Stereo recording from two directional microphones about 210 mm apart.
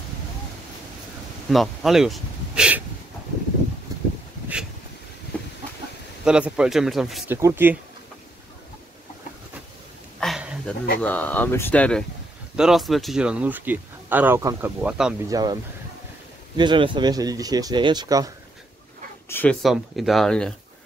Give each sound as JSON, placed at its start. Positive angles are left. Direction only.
{"t": 1.5, "sound": "speech", "side_deg": 0}
{"t": 3.9, "sound": "a sound", "side_deg": -15}
{"t": 6.2, "sound": "speech", "side_deg": -5}
{"t": 7.3, "sound": "speech", "side_deg": -10}
{"t": 10.2, "sound": "a sound", "side_deg": -5}
{"t": 11.0, "sound": "speech", "side_deg": 5}
{"t": 15.2, "sound": "speech", "side_deg": -20}
{"t": 19.2, "sound": "speech", "side_deg": 10}
{"t": 19.6, "sound": "speech", "side_deg": 0}